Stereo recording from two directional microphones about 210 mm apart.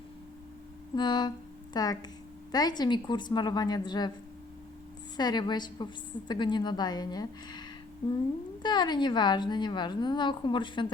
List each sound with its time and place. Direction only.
0.9 s a woman's voice: 20° left (ahead or behind)
5.1 s a woman's voice: 20° left (ahead or behind)
8.6 s a woman's voice: 20° left (ahead or behind)